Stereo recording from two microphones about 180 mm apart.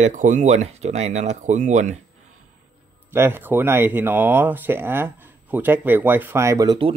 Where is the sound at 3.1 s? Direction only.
10° right (ahead or behind).